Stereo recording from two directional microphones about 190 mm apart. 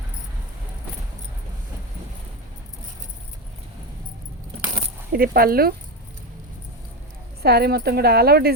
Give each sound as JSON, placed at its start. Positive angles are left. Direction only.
{"t": 4.7, "sound": "coin", "side_deg": -50}
{"t": 7.4, "sound": "a woman's voice", "side_deg": -55}